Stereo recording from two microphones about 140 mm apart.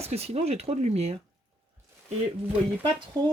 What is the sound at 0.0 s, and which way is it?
Speech, 45° right (ahead or behind).